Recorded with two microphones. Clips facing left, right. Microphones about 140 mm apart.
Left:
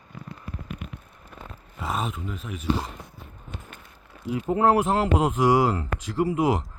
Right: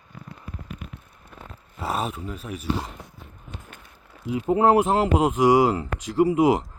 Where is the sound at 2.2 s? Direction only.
5° right (ahead or behind).